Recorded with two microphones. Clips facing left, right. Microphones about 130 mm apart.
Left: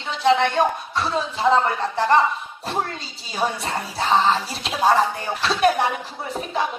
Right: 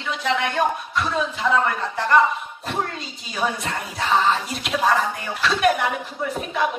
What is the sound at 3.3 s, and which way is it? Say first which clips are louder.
Speech: left 1 dB; 30° left (ahead or behind).